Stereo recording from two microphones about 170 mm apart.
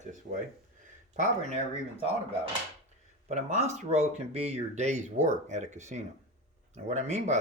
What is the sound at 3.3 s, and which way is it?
Speech, 45° right (ahead or behind).